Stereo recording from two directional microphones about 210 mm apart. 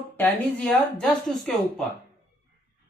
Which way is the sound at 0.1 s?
5° left (ahead or behind).